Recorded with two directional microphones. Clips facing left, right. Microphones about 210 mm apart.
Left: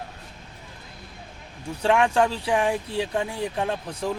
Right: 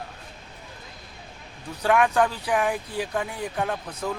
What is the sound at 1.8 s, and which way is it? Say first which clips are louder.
Speech: left 1 dB; 25° left (ahead or behind).